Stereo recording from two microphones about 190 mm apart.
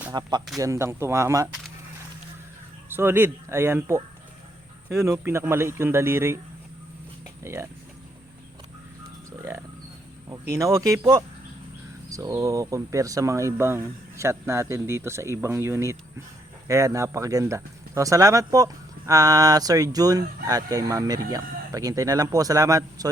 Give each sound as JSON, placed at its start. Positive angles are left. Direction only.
{"t": 0.1, "sound": "speech", "side_deg": -20}
{"t": 2.9, "sound": "speech", "side_deg": -10}
{"t": 7.4, "sound": "speech", "side_deg": -15}
{"t": 9.4, "sound": "a sound", "side_deg": -15}
{"t": 10.5, "sound": "speech", "side_deg": -15}